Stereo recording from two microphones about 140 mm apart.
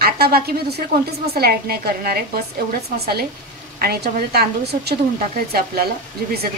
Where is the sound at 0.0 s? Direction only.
90° right.